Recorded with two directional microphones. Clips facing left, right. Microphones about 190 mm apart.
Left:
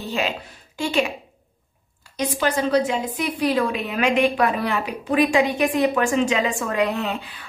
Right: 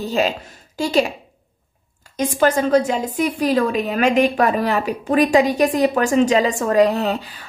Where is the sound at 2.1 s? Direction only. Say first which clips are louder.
Right 5 dB; 45° right (ahead or behind).